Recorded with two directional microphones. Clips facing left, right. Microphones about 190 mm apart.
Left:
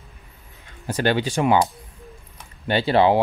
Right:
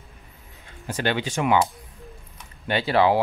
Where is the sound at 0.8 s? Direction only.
40° left (ahead or behind).